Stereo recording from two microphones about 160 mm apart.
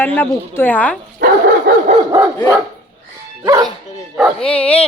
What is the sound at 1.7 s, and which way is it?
Dog, 70° right (ahead or behind).